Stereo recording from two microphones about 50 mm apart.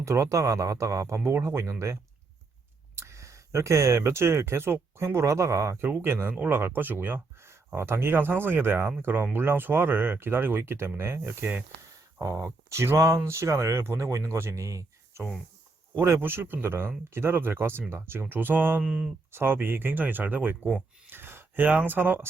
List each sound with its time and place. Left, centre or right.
0.0 s speech: right
2.9 s speech: right
5.8 s speech: right
7.8 s speech: right
11.3 s speech: right
12.2 s speech: right
16.2 s speech: right
18.8 s speech: centre
19.3 s speech: right
19.5 s speech: right
21.1 s a sound: right
21.6 s speech: right